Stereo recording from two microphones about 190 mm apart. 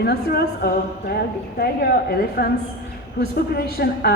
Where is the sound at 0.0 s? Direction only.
55° left (ahead or behind).